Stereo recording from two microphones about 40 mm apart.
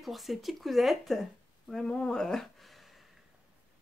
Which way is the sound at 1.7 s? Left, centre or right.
Centre.